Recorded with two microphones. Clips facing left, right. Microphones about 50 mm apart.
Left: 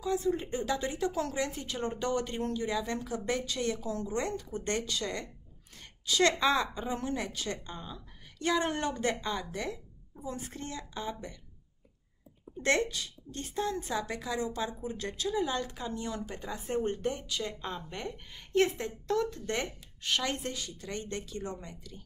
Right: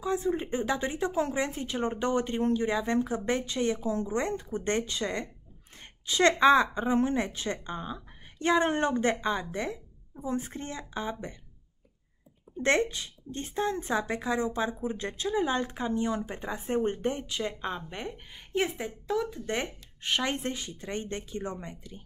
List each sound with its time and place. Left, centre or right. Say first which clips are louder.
0.0 s a woman's voice: right 2 dB; right
12.6 s a woman's voice: right 3 dB; right